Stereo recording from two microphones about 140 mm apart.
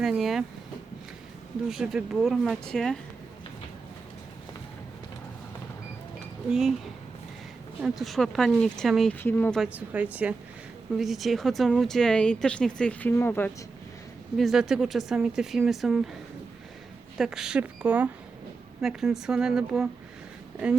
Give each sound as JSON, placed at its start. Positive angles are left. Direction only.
{"t": 0.0, "sound": "speech", "side_deg": 0}
{"t": 1.7, "sound": "speech", "side_deg": -5}
{"t": 6.5, "sound": "speech", "side_deg": -5}
{"t": 9.1, "sound": "speech", "side_deg": 15}
{"t": 9.6, "sound": "speech", "side_deg": -10}
{"t": 14.3, "sound": "speech", "side_deg": 0}
{"t": 17.2, "sound": "speech", "side_deg": -5}